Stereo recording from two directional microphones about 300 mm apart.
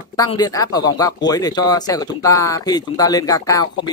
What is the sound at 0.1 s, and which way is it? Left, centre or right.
Speech, centre.